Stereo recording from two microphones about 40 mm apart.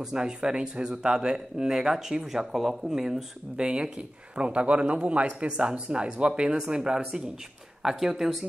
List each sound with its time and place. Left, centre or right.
0.0 s speech: centre
7.8 s speech: centre